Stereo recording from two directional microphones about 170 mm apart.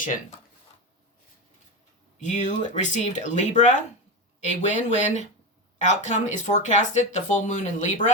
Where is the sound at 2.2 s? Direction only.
45° left (ahead or behind).